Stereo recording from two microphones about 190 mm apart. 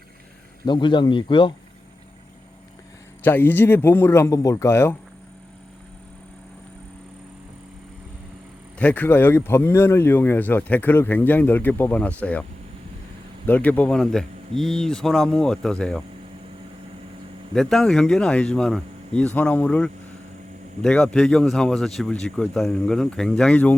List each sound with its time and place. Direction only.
0.6 s speech: 25° left (ahead or behind)
3.2 s speech: 10° left (ahead or behind)
8.8 s speech: 10° left (ahead or behind)
13.5 s speech: 10° left (ahead or behind)
17.5 s speech: centre (ahead or behind)